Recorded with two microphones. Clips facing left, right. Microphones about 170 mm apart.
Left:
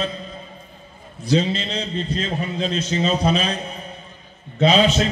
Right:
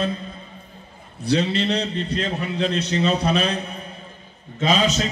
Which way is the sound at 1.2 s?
65° right (ahead or behind).